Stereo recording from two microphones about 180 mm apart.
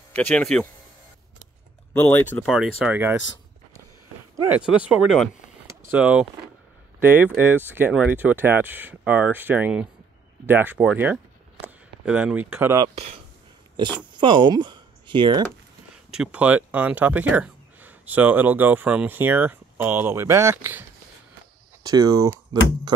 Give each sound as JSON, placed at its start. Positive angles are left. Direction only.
{"t": 0.1, "sound": "speech", "side_deg": 5}
{"t": 2.0, "sound": "speech", "side_deg": 10}
{"t": 4.4, "sound": "speech", "side_deg": -5}
{"t": 15.9, "sound": "speech", "side_deg": -5}
{"t": 21.8, "sound": "speech", "side_deg": -20}